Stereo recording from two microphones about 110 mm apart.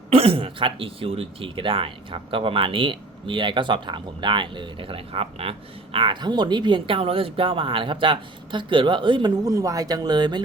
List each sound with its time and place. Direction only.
0.1 s speech: 60° right (ahead or behind)
9.4 s speech: 30° right (ahead or behind)